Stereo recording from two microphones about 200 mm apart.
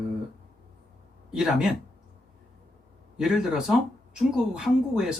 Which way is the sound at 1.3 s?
Centre (ahead or behind).